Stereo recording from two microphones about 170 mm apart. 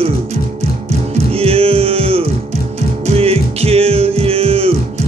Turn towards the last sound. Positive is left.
turn(degrees=-35)  # may be behind; listen again after turning